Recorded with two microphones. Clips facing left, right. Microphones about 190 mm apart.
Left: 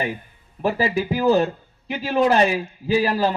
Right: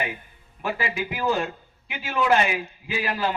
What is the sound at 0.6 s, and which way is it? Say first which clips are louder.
A man's voice: left 7 dB; 35° left (ahead or behind).